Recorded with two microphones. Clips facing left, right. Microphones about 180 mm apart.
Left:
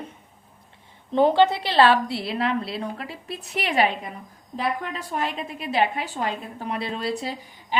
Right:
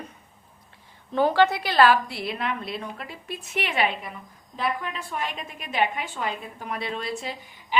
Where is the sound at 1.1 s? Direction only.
25° left (ahead or behind).